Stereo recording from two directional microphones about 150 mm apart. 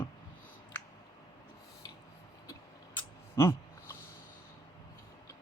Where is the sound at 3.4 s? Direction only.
15° left (ahead or behind).